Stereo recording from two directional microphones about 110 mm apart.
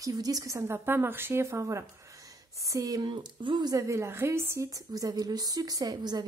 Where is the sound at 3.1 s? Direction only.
45° right (ahead or behind).